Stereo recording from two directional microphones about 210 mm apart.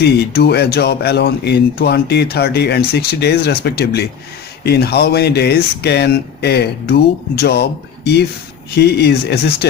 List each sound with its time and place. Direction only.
0.0 s speech: 50° left (ahead or behind)